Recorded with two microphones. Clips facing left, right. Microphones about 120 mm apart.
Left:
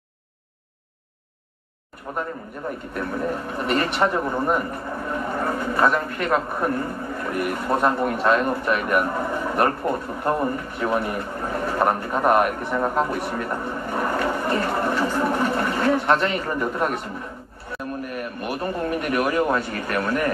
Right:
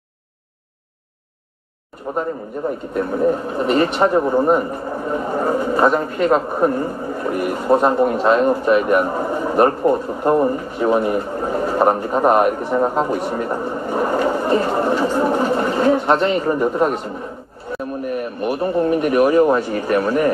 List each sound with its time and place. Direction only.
2.1 s a man's voice: 25° right (ahead or behind)
18.4 s a man's voice: 30° right (ahead or behind)